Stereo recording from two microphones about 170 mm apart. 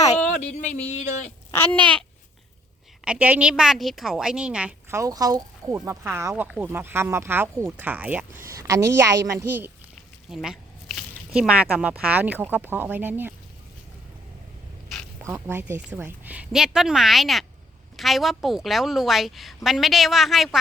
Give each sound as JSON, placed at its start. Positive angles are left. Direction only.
{"t": 1.5, "sound": "speech", "side_deg": 10}
{"t": 3.0, "sound": "a woman's voice", "side_deg": -5}
{"t": 4.9, "sound": "speech", "side_deg": -20}
{"t": 15.2, "sound": "a woman's voice", "side_deg": -15}